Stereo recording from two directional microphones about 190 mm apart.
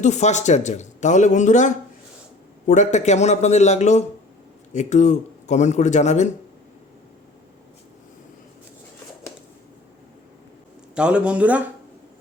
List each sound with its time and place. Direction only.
0.0 s a man's voice: 35° left (ahead or behind)
10.9 s speech: 5° right (ahead or behind)